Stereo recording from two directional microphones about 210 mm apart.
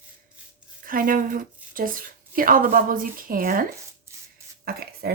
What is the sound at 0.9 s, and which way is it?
Speech, 40° right (ahead or behind).